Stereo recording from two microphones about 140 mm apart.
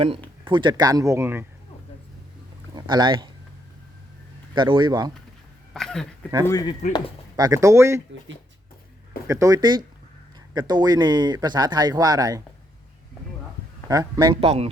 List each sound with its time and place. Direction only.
0.4 s speech: 35° right (ahead or behind); by 1.5 s 15° right (ahead or behind)
2.7 s speech: 30° right (ahead or behind)
4.5 s speech: 35° right (ahead or behind)
5.7 s a sound: 5° left (ahead or behind)
6.4 s speech: 25° left (ahead or behind)
7.3 s speech: 25° right (ahead or behind)
9.2 s speech: 20° right (ahead or behind)
13.8 s speech: 25° right (ahead or behind)